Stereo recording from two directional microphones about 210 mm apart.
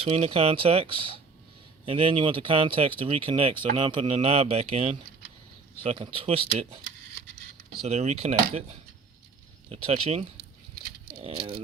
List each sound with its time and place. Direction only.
0.0 s speech: 30° right (ahead or behind)
7.8 s speech: 30° right (ahead or behind)